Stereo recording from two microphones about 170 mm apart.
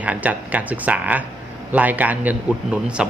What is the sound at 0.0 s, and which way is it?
Speech, 10° right (ahead or behind).